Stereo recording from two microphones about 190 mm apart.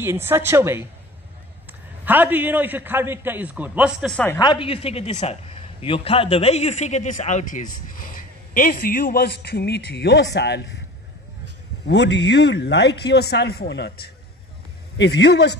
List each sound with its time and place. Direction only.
0.0 s a man's voice: 10° right (ahead or behind)
4.4 s a woman's voice: 25° left (ahead or behind); by 10.6 s 60° left (ahead or behind)
11.9 s speech: 65° left (ahead or behind)